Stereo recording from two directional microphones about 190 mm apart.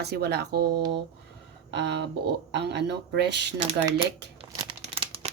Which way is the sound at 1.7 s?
65° right (ahead or behind).